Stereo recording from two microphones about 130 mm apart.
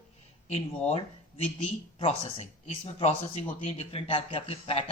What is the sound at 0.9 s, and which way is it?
Speech, 50° left (ahead or behind).